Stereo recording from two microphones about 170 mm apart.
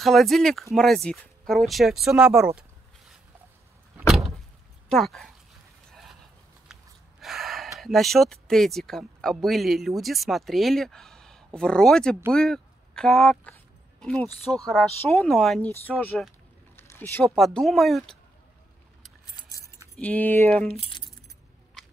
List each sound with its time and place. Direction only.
0.0 s speech: centre (ahead or behind)
4.8 s speech: centre (ahead or behind)
5.9 s a sound: centre (ahead or behind)
7.8 s speech: centre (ahead or behind)
16.7 s a sound: 15° left (ahead or behind)
17.4 s speech: centre (ahead or behind)
19.3 s keys jangling: 20° left (ahead or behind)
20.0 s speech: 10° left (ahead or behind)
20.7 s speech: 35° left (ahead or behind)